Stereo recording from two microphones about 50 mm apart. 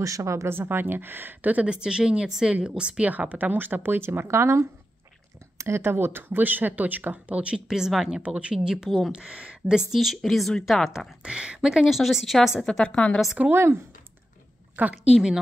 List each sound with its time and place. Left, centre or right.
0.0 s speech: right
0.5 s speech: right
1.7 s speech: centre
3.1 s speech: right
7.5 s speech: centre
9.9 s a woman's voice: centre
11.2 s speech: centre
11.7 s a woman's voice: centre
12.6 s a woman's voice: centre
13.5 s speech: right
14.8 s speech: right
15.1 s speech: centre